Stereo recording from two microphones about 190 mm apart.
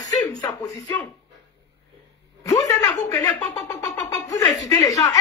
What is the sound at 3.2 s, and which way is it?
Speech, 20° left (ahead or behind).